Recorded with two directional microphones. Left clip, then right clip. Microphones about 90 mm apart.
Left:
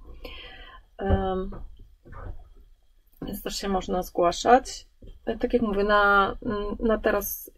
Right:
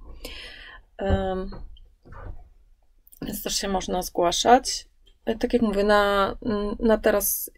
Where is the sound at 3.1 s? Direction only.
20° right (ahead or behind).